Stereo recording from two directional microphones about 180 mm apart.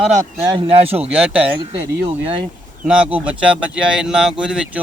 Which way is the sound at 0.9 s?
5° right (ahead or behind).